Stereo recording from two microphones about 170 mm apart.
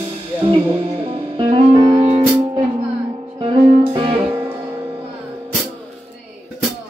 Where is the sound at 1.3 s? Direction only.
30° right (ahead or behind).